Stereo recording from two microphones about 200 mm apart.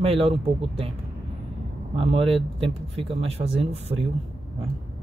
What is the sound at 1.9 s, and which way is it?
A man's voice, 30° right (ahead or behind).